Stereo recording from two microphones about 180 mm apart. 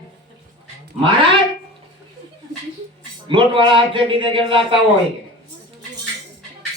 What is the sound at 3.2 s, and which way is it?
A man's voice, 30° right (ahead or behind).